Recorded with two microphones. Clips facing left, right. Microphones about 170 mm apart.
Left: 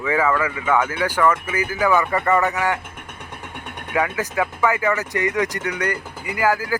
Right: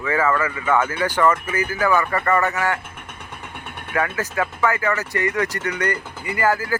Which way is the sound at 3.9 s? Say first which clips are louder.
Left 1 dB; 15° left (ahead or behind).